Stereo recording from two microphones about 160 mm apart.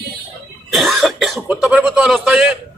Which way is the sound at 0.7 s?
Centre (ahead or behind).